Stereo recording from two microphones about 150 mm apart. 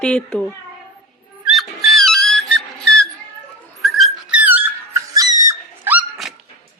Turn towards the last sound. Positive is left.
turn(degrees=-10)  # may be behind; listen again after turning